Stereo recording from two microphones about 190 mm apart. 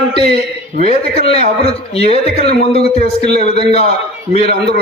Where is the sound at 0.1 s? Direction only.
30° left (ahead or behind).